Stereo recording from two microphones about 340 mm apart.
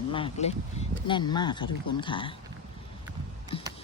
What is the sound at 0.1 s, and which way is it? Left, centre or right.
Speech, centre.